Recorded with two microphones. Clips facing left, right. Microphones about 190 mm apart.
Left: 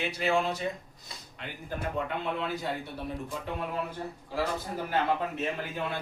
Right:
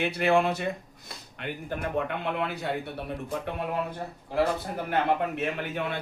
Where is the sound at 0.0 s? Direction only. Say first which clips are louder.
Right 5 dB; 60° right (ahead or behind).